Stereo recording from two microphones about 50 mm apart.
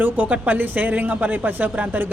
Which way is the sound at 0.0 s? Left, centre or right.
Right.